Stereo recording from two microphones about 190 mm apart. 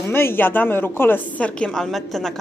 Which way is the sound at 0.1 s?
10° left (ahead or behind).